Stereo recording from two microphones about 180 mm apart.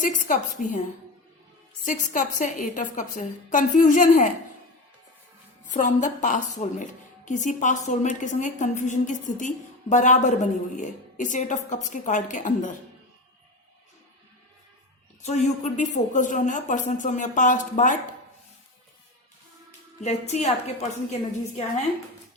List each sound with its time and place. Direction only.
0.0 s a woman's voice: 45° left (ahead or behind)
1.8 s a woman's voice: 45° left (ahead or behind)
5.7 s a woman's voice: 45° left (ahead or behind)
15.2 s a woman's voice: 40° left (ahead or behind)
20.0 s a woman's voice: 40° left (ahead or behind)